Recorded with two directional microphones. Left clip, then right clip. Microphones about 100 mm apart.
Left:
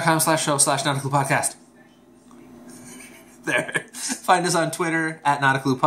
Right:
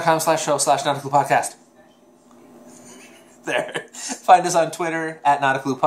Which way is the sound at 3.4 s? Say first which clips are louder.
Even; 15° left (ahead or behind).